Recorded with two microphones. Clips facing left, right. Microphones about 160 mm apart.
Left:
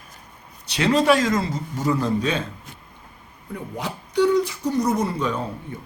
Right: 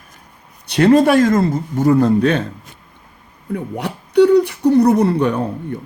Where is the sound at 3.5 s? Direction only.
65° right (ahead or behind).